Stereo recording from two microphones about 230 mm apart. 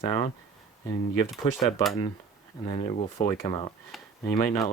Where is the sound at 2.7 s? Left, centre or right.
Left.